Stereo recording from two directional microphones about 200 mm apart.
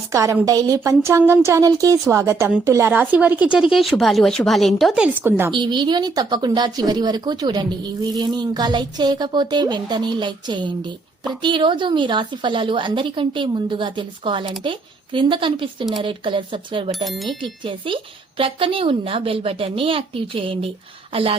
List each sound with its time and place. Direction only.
0.1 s speech: 15° right (ahead or behind)
5.5 s speech: 25° right (ahead or behind)
16.9 s speech: centre (ahead or behind)
17.6 s speech: 25° right (ahead or behind)